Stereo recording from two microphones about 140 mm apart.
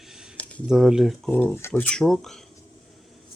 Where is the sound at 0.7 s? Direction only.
5° right (ahead or behind).